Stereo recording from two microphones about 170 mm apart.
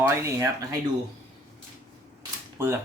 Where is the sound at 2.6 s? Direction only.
15° right (ahead or behind).